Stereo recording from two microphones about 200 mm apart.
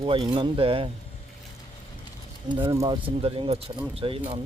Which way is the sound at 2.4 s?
25° right (ahead or behind).